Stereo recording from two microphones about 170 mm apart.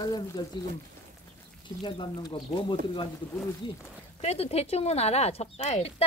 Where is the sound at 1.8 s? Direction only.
30° left (ahead or behind).